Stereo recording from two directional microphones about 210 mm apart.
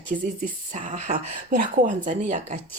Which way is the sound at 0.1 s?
40° right (ahead or behind).